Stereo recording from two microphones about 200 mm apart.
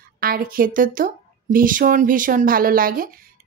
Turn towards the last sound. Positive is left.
turn(degrees=-45)  # may be behind; listen again after turning